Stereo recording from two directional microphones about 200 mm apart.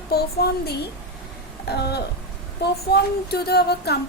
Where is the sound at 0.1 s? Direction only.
50° left (ahead or behind).